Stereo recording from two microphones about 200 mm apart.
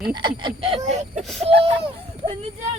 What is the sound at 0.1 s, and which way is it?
Speech, 20° right (ahead or behind).